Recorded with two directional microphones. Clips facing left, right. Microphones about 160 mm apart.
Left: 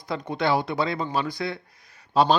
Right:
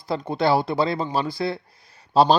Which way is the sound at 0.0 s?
30° right (ahead or behind).